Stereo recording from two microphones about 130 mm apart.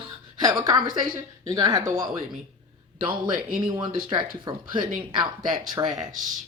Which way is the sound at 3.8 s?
35° right (ahead or behind).